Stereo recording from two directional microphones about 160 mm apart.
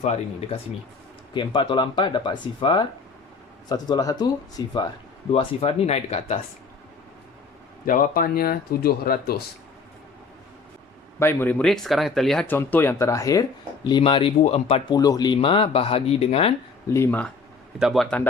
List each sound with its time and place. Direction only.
0.0 s speech: 45° left (ahead or behind)
1.3 s speech: 30° left (ahead or behind)
5.3 s speech: 35° left (ahead or behind)
7.9 s speech: 60° left (ahead or behind)
11.2 s speech: 15° left (ahead or behind)
12.5 s speech: 15° left (ahead or behind); by 14.8 s 40° left (ahead or behind)
14.8 s speech: 25° left (ahead or behind); by 16.5 s 40° left (ahead or behind)
16.9 s speech: 15° left (ahead or behind)
17.7 s speech: centre (ahead or behind)